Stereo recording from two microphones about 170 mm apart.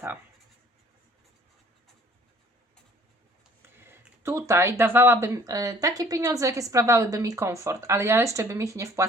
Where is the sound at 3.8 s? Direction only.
15° right (ahead or behind).